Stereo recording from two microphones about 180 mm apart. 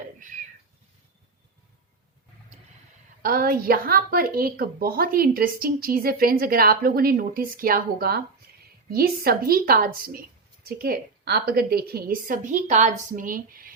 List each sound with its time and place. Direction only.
3.2 s a woman's voice: 55° right (ahead or behind)